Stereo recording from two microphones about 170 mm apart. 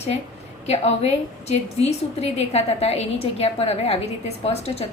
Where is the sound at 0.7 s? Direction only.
40° left (ahead or behind).